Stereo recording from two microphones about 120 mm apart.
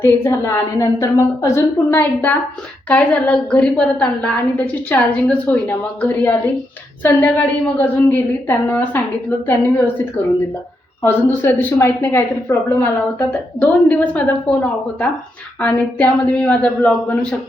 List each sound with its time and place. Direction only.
0.0 s a woman's voice: 20° left (ahead or behind)
11.0 s a woman's voice: 15° left (ahead or behind)